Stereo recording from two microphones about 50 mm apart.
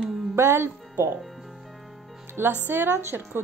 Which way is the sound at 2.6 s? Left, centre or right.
Right.